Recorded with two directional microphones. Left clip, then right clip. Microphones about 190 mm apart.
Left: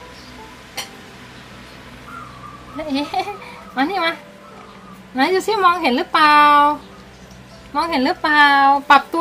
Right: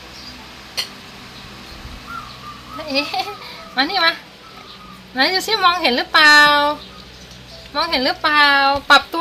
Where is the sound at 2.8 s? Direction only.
10° right (ahead or behind).